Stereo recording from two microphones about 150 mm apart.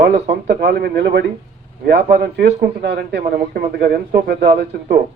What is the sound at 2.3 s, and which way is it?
Speech, 90° right.